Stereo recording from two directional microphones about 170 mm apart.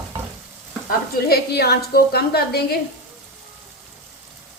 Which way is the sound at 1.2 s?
65° left (ahead or behind).